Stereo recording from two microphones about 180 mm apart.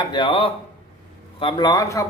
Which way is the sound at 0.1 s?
25° left (ahead or behind).